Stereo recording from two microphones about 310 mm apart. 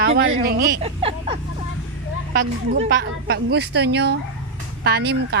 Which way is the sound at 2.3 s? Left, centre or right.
Right.